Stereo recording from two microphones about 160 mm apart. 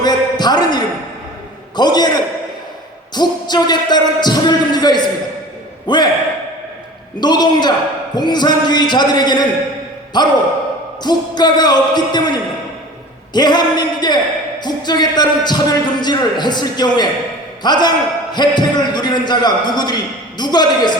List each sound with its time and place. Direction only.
0.0 s a sound: 25° left (ahead or behind)
1.7 s a man's voice: 25° left (ahead or behind)
3.2 s a man's voice: 25° left (ahead or behind)
7.2 s a man's voice: 25° left (ahead or behind)